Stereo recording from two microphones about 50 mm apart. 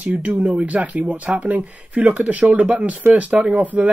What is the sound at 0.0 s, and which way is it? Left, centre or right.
Speech, right.